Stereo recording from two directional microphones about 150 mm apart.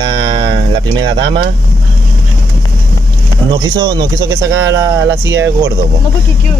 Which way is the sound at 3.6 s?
25° right (ahead or behind).